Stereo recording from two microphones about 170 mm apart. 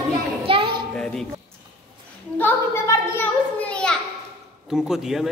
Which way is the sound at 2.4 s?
15° left (ahead or behind).